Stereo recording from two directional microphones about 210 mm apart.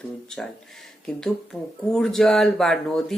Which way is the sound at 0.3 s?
Centre (ahead or behind).